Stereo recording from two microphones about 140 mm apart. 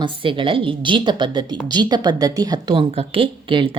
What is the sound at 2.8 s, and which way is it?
Speech, 45° right (ahead or behind).